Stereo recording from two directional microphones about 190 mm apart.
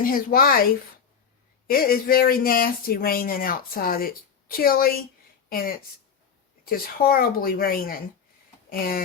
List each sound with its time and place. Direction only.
0.0 s speech: 50° left (ahead or behind)